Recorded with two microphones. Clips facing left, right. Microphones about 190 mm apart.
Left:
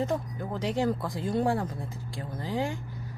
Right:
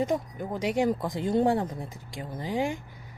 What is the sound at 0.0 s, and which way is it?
Speech, 15° right (ahead or behind).